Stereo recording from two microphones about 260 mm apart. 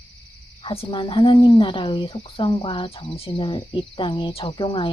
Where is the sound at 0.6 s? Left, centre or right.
Left.